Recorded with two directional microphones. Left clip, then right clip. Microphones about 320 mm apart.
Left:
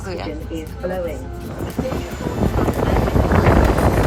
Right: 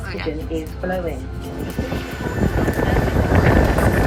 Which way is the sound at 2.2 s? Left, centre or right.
Centre.